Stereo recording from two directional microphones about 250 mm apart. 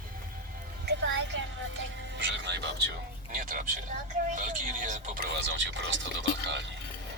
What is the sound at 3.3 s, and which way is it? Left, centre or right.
Speech, right.